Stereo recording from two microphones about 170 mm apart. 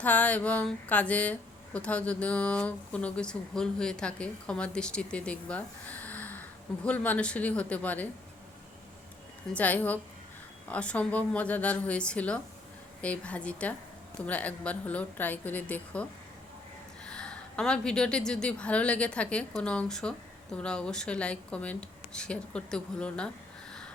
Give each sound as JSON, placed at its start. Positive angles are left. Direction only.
{"t": 0.0, "sound": "speech", "side_deg": 10}
{"t": 9.6, "sound": "a woman's voice", "side_deg": 10}